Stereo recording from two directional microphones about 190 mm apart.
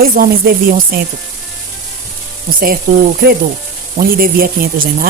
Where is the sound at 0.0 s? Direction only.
50° right (ahead or behind).